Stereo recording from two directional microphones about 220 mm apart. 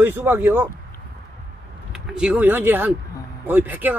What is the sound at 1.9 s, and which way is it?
Speech, 5° right (ahead or behind).